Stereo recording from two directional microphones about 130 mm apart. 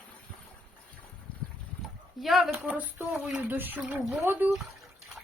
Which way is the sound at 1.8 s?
Centre (ahead or behind).